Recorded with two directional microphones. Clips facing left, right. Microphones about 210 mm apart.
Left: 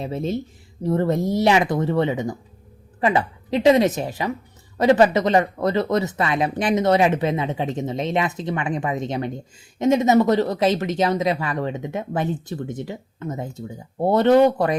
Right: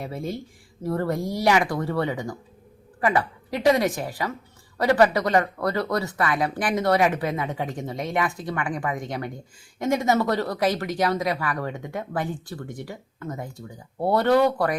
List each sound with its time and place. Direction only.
0.0 s speech: 25° left (ahead or behind)